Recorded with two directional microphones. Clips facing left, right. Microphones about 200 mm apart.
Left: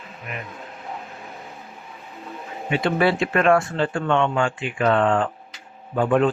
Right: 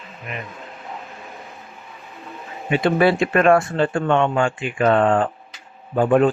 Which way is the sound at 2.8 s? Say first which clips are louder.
Right 4 dB; 45° right (ahead or behind).